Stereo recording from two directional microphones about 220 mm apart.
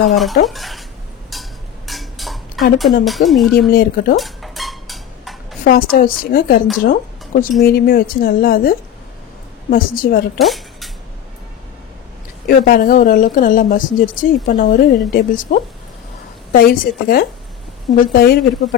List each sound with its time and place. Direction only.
0.0 s speech: centre (ahead or behind)
1.3 s a sound: centre (ahead or behind)
1.9 s dishes: centre (ahead or behind)
3.1 s speech: centre (ahead or behind)
3.7 s speech: 40° left (ahead or behind)
4.2 s a sound: centre (ahead or behind)
5.6 s a woman's voice: 40° left (ahead or behind)
10.4 s a sound: centre (ahead or behind)
12.4 s a woman's voice: 40° left (ahead or behind)